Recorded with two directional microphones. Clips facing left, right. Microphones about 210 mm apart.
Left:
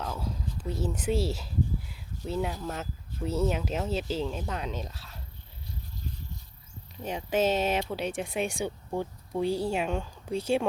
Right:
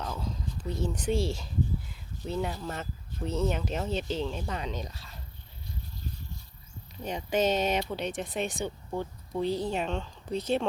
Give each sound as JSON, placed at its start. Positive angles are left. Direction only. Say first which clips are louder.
{"t": 0.0, "sound": "a sound", "louder": "left 1 dB", "side_deg": 5}
{"t": 3.2, "sound": "speech", "louder": "left 1 dB", "side_deg": 5}
{"t": 7.0, "sound": "speech", "louder": "left 1 dB", "side_deg": 5}